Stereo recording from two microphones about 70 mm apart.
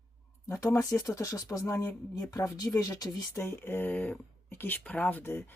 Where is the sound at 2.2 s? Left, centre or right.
Left.